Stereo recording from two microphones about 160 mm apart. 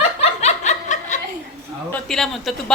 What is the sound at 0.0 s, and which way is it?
Snicker, 40° left (ahead or behind).